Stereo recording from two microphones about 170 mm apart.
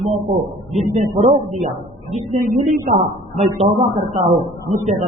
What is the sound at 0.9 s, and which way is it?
A man's voice, 40° right (ahead or behind).